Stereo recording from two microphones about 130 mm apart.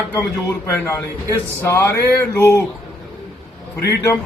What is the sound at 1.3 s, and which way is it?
Speech, 20° left (ahead or behind).